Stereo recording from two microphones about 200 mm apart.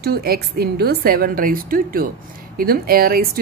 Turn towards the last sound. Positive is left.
turn(degrees=-50)  # may be behind; listen again after turning